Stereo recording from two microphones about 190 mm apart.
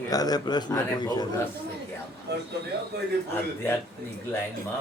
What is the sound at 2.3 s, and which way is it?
Speech, 60° right (ahead or behind).